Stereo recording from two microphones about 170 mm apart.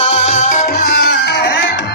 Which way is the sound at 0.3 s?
45° left (ahead or behind).